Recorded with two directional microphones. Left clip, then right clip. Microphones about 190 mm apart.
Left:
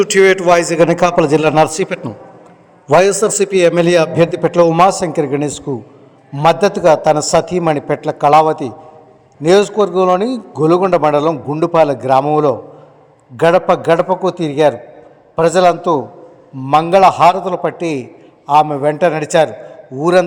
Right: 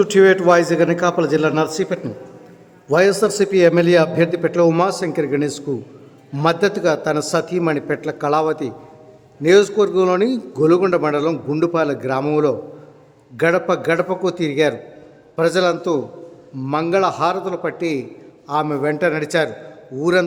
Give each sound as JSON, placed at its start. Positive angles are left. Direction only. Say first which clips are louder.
{"t": 0.0, "sound": "a man's voice", "louder": "left 2 dB", "side_deg": 20}
{"t": 10.2, "sound": "speech", "louder": "left 1 dB", "side_deg": -25}
{"t": 10.6, "sound": "a man's voice", "louder": "left 4 dB", "side_deg": 5}
{"t": 11.3, "sound": "a man's voice", "louder": "left 4 dB", "side_deg": 0}
{"t": 11.6, "sound": "a man's voice", "louder": "left 8 dB", "side_deg": 10}